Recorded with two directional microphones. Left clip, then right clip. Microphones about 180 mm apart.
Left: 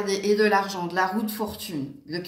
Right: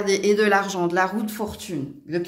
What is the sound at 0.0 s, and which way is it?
A man's voice, 60° right (ahead or behind).